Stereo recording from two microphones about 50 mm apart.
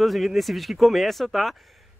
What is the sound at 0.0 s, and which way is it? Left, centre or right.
Speech, centre.